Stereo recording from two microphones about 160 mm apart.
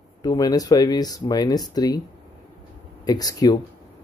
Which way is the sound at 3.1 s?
25° left (ahead or behind).